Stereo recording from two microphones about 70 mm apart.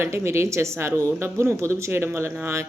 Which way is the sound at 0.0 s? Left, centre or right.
Right.